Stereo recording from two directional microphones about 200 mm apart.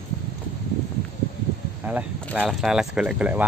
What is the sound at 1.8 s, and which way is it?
Speech, 10° right (ahead or behind).